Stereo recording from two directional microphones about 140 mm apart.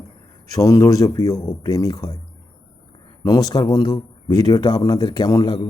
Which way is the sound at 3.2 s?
25° left (ahead or behind).